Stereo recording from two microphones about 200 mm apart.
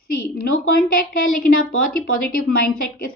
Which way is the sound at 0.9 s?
45° left (ahead or behind).